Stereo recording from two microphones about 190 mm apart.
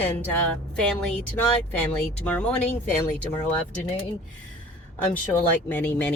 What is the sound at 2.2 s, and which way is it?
Speech, 5° left (ahead or behind).